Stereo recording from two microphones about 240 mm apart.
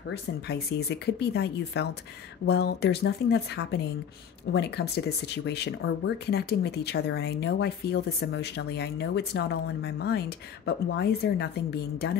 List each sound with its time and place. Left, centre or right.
0.1 s speech: left